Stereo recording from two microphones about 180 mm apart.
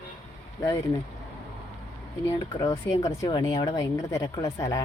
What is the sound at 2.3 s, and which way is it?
Speech, 20° left (ahead or behind).